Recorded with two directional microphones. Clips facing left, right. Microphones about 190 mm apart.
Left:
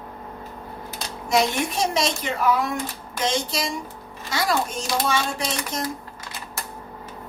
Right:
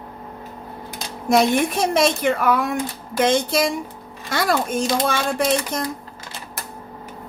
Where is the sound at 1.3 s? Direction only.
55° right (ahead or behind).